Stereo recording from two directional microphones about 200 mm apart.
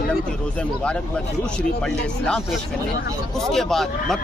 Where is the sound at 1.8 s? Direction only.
5° left (ahead or behind).